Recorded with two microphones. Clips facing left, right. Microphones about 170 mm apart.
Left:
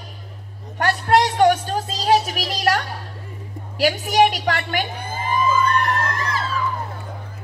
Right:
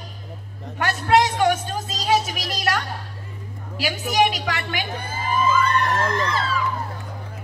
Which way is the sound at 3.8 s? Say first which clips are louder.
Left 4 dB; 45° left (ahead or behind).